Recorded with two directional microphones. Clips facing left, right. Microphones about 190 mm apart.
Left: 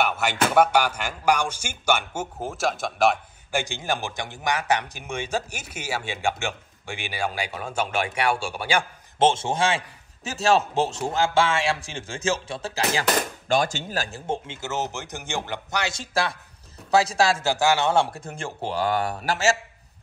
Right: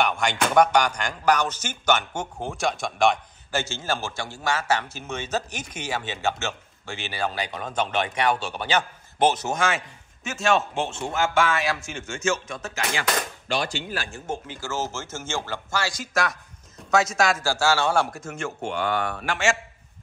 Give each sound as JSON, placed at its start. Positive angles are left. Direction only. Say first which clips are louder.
{"t": 0.0, "sound": "a man's voice", "louder": "even", "side_deg": 5}
{"t": 3.5, "sound": "a man's voice", "louder": "left 1 dB", "side_deg": 15}
{"t": 9.2, "sound": "a man's voice", "louder": "left 1 dB", "side_deg": 25}
{"t": 17.5, "sound": "a man's voice", "louder": "left 1 dB", "side_deg": 20}